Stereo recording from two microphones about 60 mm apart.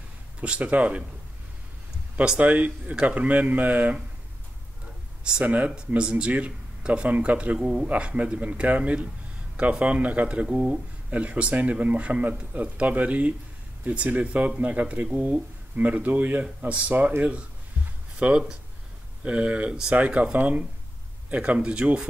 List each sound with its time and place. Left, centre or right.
0.4 s speech: right
2.2 s speech: right
5.2 s speech: right